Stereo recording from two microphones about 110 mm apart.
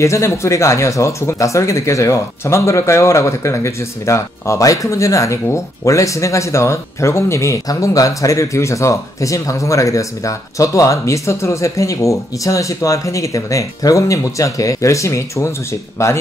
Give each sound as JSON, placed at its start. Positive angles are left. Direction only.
{"t": 0.0, "sound": "speech", "side_deg": 25}